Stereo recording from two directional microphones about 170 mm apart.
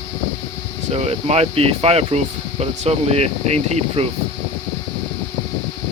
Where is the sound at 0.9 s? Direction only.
40° right (ahead or behind).